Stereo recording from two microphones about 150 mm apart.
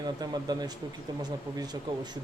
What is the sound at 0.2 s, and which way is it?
Speech, 25° right (ahead or behind).